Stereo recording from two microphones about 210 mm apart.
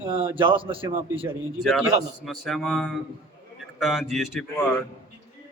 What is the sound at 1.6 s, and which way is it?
A man's voice, centre (ahead or behind).